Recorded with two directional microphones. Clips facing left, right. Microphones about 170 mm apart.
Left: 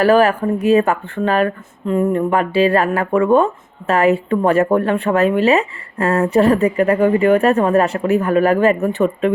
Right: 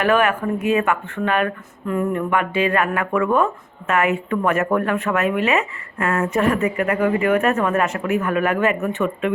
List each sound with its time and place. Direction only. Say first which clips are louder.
0.0 s speech: left 5 dB; 35° left (ahead or behind)